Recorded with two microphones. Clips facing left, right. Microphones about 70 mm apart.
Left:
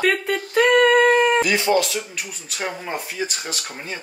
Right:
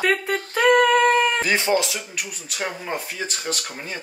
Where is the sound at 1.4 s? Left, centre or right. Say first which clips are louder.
Left 2 dB; right.